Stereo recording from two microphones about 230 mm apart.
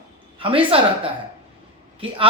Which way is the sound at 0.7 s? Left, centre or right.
Right.